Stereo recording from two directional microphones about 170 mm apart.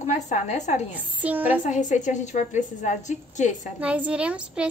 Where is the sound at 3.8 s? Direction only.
10° right (ahead or behind).